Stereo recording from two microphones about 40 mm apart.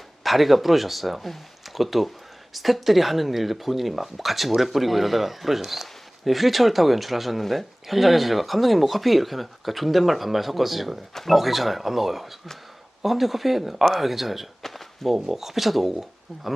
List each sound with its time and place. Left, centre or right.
0.2 s speech: centre